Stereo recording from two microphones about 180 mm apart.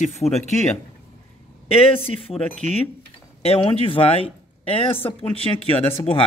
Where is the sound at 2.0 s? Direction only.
35° left (ahead or behind).